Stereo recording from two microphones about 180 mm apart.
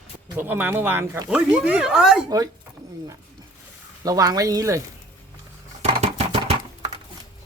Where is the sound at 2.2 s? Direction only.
20° right (ahead or behind).